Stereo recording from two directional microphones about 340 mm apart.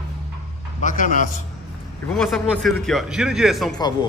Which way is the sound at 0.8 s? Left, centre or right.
Left.